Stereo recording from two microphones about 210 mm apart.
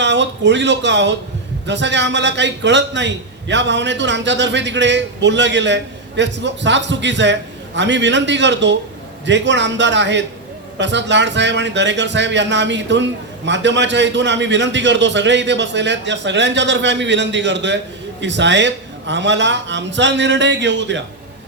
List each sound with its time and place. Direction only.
0.0 s a man's voice: 55° right (ahead or behind)